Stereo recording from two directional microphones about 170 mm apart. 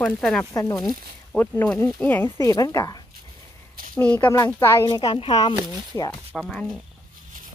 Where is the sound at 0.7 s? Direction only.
5° left (ahead or behind); by 3.0 s 20° left (ahead or behind).